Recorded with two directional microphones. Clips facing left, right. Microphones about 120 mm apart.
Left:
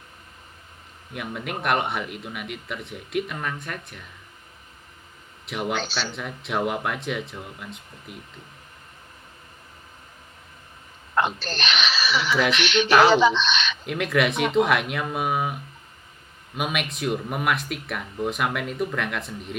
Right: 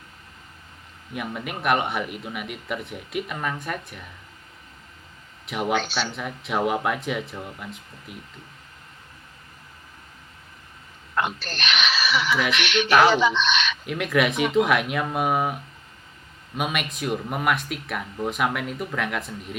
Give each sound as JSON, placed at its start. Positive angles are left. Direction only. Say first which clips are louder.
{"t": 1.1, "sound": "speech", "louder": "even", "side_deg": 0}
{"t": 5.5, "sound": "speech", "louder": "right 3 dB", "side_deg": 0}
{"t": 11.1, "sound": "speech", "louder": "left 2 dB", "side_deg": 35}
{"t": 13.8, "sound": "speech", "louder": "left 1 dB", "side_deg": 0}